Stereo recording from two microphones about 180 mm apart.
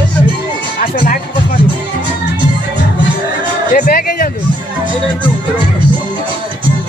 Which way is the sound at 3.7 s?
55° left (ahead or behind).